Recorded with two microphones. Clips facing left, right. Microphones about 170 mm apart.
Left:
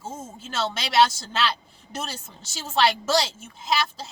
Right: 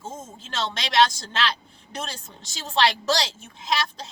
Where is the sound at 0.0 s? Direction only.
5° left (ahead or behind).